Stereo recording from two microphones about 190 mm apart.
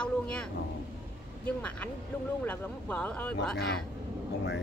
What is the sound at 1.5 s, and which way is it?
Speech, 5° left (ahead or behind).